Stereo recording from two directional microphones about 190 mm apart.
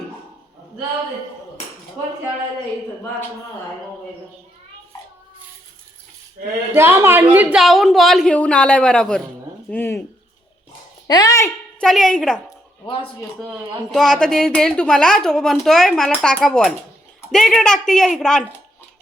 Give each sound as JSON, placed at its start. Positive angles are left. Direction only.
{"t": 6.7, "sound": "a woman's voice", "side_deg": -15}
{"t": 11.1, "sound": "speech", "side_deg": 20}
{"t": 11.8, "sound": "a woman's voice", "side_deg": 0}
{"t": 12.8, "sound": "speech", "side_deg": 25}
{"t": 13.5, "sound": "a woman's voice", "side_deg": 0}